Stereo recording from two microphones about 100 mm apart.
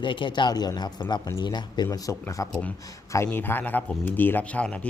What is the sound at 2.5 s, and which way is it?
Speech, 15° left (ahead or behind).